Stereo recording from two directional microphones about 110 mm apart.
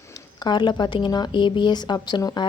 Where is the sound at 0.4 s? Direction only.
40° left (ahead or behind).